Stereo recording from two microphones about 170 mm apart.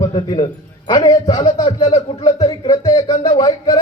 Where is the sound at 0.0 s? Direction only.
25° left (ahead or behind).